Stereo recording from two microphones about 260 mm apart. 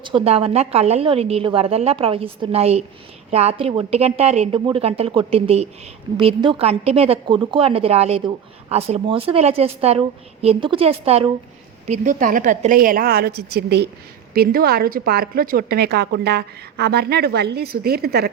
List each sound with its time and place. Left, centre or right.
0.0 s a woman's voice: centre; by 18.3 s right